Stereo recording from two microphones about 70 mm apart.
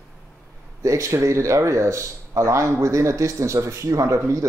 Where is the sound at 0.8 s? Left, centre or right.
Right.